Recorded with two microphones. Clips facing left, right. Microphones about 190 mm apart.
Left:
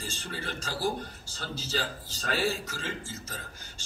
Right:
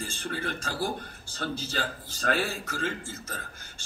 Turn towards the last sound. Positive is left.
turn(degrees=-55)  # may be behind; listen again after turning